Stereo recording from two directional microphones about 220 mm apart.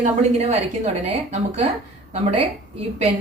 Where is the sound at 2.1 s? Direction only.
30° right (ahead or behind).